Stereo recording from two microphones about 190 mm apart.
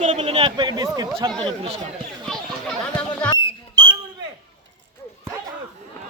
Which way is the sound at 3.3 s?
80° right.